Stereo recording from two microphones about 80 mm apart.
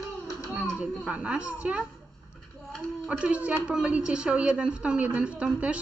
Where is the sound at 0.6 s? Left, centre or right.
Centre.